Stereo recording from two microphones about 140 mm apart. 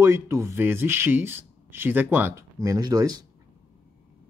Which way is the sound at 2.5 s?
25° right (ahead or behind).